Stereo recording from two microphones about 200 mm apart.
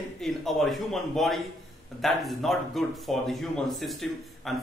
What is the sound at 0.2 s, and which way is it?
Speech, centre (ahead or behind).